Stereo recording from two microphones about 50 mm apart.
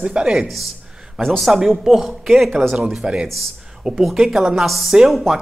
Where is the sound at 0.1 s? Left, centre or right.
Centre.